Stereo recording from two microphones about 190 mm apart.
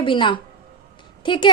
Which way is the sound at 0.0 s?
25° left (ahead or behind).